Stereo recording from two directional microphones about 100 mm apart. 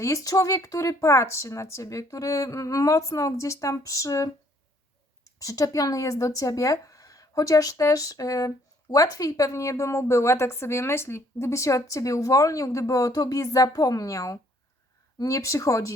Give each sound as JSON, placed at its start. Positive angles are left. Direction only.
{"t": 0.0, "sound": "speech", "side_deg": 35}
{"t": 5.4, "sound": "speech", "side_deg": 35}